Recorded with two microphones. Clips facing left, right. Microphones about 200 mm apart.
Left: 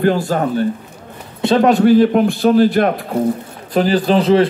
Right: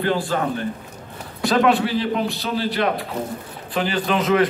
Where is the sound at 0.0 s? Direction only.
45° left (ahead or behind).